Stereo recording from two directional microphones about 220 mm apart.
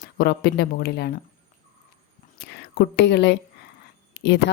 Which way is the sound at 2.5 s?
50° left (ahead or behind).